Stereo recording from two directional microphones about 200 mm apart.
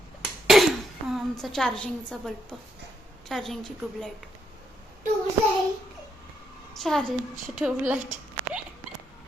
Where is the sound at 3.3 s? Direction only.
Centre (ahead or behind).